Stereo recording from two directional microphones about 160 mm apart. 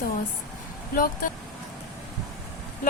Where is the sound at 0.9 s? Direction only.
60° left (ahead or behind).